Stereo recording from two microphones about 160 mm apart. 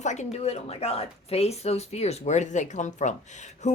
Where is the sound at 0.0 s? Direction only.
45° left (ahead or behind).